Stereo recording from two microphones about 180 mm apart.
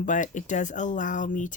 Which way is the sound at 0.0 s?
45° left (ahead or behind).